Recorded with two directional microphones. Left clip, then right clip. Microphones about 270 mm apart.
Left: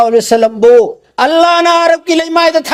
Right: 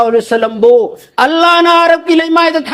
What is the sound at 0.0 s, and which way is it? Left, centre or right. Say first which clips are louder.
A man's voice: left 2 dB; left.